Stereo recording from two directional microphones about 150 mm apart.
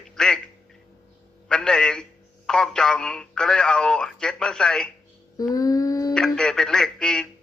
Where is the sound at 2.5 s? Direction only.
5° left (ahead or behind).